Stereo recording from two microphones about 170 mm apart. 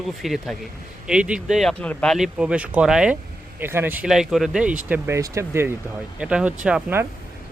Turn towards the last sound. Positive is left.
turn(degrees=-10)  # may be behind; listen again after turning